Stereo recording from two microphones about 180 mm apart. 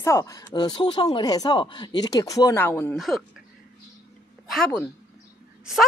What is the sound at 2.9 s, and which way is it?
Speech, centre (ahead or behind).